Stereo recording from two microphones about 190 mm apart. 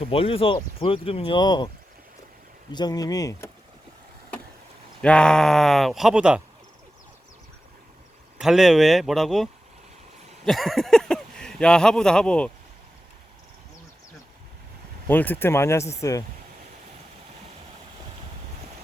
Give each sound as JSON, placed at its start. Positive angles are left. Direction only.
{"t": 0.0, "sound": "speech", "side_deg": 30}
{"t": 2.7, "sound": "speech", "side_deg": 20}
{"t": 5.0, "sound": "speech", "side_deg": 5}
{"t": 8.4, "sound": "speech", "side_deg": 0}
{"t": 15.0, "sound": "speech", "side_deg": 10}